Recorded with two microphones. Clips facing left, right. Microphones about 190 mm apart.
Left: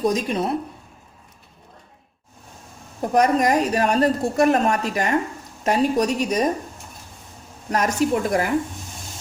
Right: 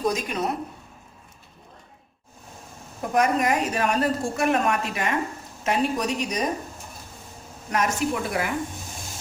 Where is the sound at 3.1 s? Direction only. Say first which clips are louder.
Left 4 dB; 35° left (ahead or behind).